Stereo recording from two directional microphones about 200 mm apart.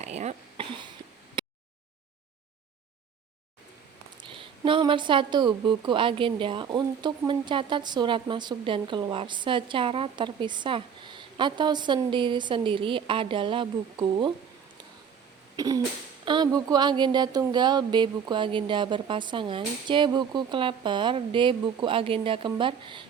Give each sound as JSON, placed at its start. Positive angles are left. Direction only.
{"t": 0.0, "sound": "a sound", "side_deg": -35}
{"t": 4.2, "sound": "a woman's voice", "side_deg": -25}
{"t": 15.5, "sound": "cough", "side_deg": -20}
{"t": 16.2, "sound": "a woman's voice", "side_deg": -20}